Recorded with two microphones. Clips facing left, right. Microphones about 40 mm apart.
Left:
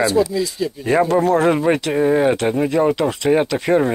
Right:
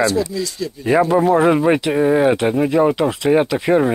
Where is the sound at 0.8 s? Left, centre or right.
Centre.